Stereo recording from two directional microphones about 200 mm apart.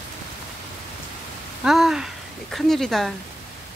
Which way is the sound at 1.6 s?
Centre (ahead or behind).